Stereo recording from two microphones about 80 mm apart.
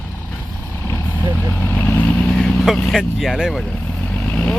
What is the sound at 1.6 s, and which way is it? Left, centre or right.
Vehicle, left.